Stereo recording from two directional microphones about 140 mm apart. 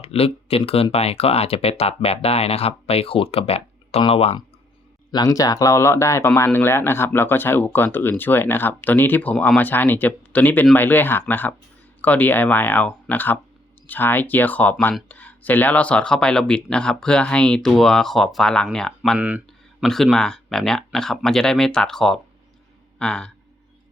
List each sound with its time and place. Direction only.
0.0 s speech: 45° left (ahead or behind)
5.1 s speech: 25° left (ahead or behind); by 23.3 s 5° left (ahead or behind)